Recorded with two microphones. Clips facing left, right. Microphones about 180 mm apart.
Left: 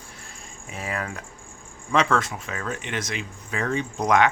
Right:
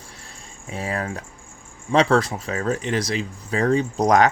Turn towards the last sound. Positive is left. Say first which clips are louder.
# right 4 dB
turn(degrees=-40)  # may be behind; listen again after turning